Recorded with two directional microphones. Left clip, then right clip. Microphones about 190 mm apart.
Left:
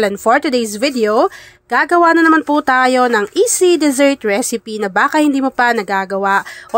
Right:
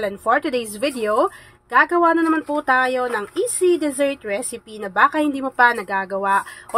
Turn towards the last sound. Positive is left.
turn(degrees=40)  # may be behind; listen again after turning